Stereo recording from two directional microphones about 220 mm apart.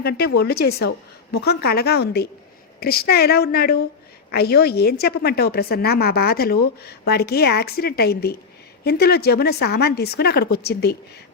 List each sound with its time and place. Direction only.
0.0 s a woman's voice: 45° left (ahead or behind)